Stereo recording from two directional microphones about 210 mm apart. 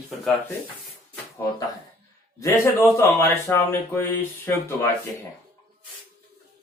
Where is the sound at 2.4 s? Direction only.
15° left (ahead or behind).